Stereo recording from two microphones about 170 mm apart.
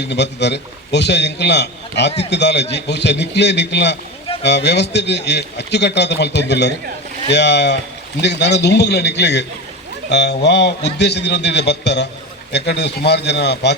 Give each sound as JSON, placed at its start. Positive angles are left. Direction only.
{"t": 0.0, "sound": "a man's voice", "side_deg": 90}